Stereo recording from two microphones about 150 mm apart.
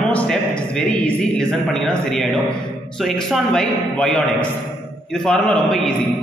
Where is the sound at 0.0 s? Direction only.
5° left (ahead or behind).